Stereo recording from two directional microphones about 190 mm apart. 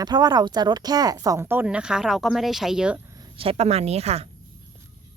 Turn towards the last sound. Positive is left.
turn(degrees=-35)  # may be behind; listen again after turning